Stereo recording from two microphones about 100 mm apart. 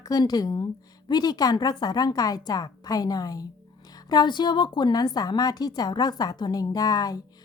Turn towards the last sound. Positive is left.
turn(degrees=40)  # may be behind; listen again after turning